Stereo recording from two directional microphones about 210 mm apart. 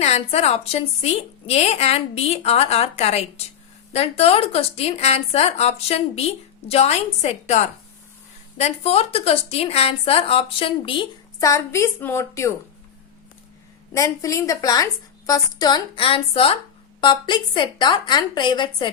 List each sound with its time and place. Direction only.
0.0 s speech: 30° left (ahead or behind); by 12.5 s 15° left (ahead or behind)
13.9 s a woman's voice: 15° left (ahead or behind)